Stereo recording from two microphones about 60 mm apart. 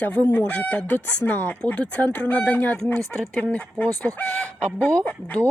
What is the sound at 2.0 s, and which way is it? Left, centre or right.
Speech, left.